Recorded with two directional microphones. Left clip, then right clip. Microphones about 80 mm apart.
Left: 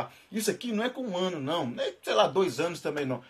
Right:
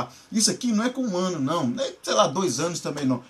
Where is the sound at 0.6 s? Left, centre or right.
Left.